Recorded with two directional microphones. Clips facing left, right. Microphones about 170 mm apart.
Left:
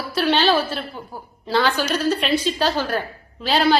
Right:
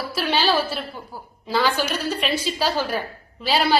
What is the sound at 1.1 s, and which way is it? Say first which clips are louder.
Speech: left 2 dB; 20° left (ahead or behind).